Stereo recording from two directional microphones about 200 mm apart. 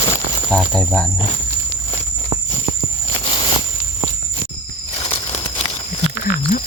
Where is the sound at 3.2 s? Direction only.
25° left (ahead or behind).